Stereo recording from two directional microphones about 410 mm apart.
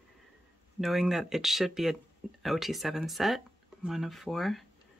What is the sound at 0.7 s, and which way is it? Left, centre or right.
Speech, centre.